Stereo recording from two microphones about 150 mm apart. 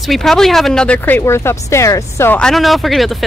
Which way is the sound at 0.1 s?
Centre (ahead or behind).